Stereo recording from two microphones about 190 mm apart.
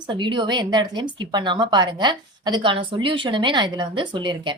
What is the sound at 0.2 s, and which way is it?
A woman's voice, 25° right (ahead or behind).